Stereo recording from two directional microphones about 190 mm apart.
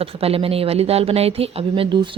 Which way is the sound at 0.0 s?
30° right (ahead or behind).